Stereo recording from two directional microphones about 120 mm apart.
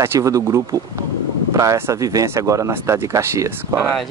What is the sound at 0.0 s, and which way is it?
Speech, 25° right (ahead or behind).